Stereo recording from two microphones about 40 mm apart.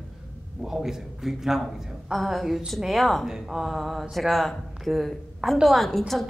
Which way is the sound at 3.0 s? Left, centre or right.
Centre.